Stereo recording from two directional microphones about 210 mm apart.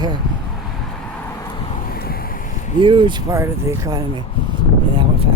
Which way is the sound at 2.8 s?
25° right (ahead or behind).